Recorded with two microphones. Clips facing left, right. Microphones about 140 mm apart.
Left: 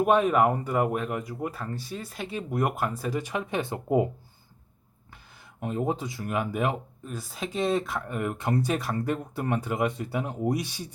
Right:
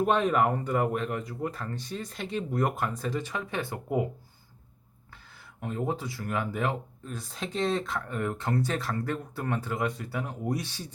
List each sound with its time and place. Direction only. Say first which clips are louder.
0.0 s speech: left 3 dB; 10° left (ahead or behind); by 4.1 s 25° left (ahead or behind)
5.1 s speech: even; 20° left (ahead or behind)